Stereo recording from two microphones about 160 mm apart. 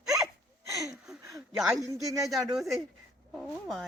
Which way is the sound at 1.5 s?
Centre (ahead or behind).